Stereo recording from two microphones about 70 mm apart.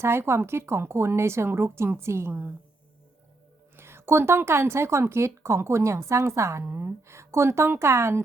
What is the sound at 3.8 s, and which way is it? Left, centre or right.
A woman's voice, right.